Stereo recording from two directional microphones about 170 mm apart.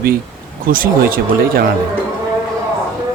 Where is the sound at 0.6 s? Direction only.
55° right (ahead or behind).